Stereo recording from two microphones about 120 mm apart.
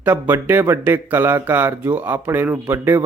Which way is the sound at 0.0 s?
15° right (ahead or behind).